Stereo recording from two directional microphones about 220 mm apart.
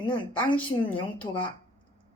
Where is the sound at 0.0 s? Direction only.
20° left (ahead or behind).